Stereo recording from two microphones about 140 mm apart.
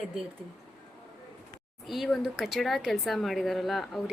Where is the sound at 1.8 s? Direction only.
Centre (ahead or behind).